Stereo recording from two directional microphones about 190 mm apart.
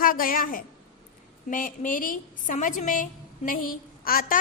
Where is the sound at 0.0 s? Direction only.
45° left (ahead or behind).